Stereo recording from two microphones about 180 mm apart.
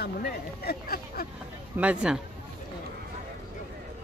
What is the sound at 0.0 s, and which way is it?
Speech, 60° left (ahead or behind).